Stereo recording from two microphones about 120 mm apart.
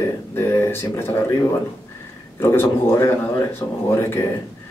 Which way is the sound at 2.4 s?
20° left (ahead or behind).